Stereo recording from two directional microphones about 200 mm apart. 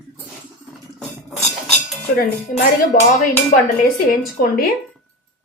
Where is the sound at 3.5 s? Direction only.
40° left (ahead or behind).